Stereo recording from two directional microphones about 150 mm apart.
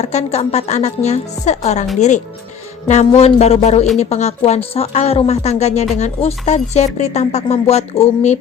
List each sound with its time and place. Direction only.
0.0 s speech: 45° left (ahead or behind)